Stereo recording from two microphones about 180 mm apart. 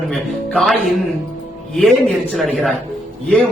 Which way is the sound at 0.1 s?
Centre (ahead or behind).